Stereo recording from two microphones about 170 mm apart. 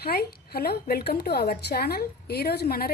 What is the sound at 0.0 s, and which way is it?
Speech, 65° left (ahead or behind).